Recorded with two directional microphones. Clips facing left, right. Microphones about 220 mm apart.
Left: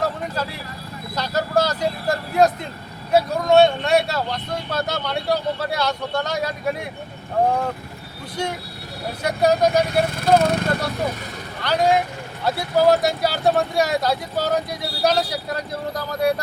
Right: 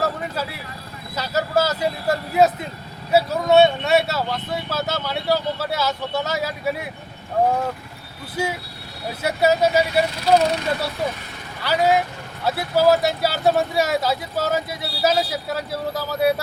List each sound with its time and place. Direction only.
0.0 s vehicle: 5° right (ahead or behind)
1.1 s speech: 5° right (ahead or behind)
8.4 s speech: 5° right (ahead or behind)
10.0 s speech: 50° left (ahead or behind)
11.6 s speech: 5° right (ahead or behind)